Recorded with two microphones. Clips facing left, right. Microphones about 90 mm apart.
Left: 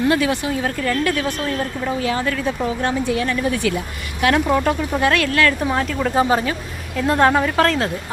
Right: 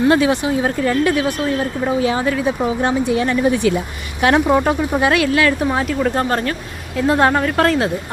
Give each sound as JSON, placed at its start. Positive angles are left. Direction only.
{"t": 0.1, "sound": "a woman's voice", "side_deg": -20}
{"t": 6.1, "sound": "speech", "side_deg": 5}